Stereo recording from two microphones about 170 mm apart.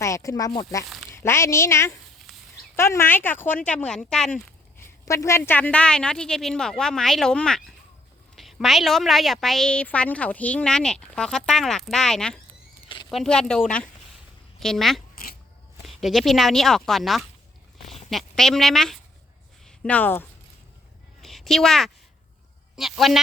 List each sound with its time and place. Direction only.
0.0 s a woman's voice: 20° left (ahead or behind)
5.0 s a woman's voice: 15° left (ahead or behind)
21.2 s a sound: centre (ahead or behind)
22.7 s speech: centre (ahead or behind)